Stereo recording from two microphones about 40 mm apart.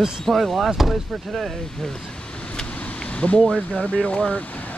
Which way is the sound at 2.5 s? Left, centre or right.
Left.